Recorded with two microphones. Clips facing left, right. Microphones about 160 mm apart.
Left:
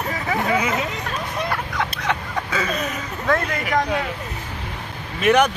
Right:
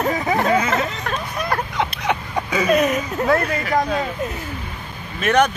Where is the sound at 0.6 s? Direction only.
15° left (ahead or behind).